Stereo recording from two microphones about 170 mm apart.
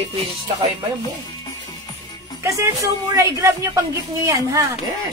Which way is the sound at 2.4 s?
20° right (ahead or behind).